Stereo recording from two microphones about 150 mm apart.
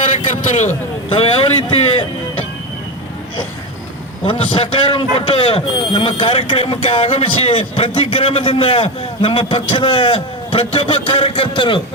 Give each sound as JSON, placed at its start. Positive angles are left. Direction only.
{"t": 1.1, "sound": "a man's voice", "side_deg": 40}
{"t": 4.3, "sound": "a man's voice", "side_deg": 35}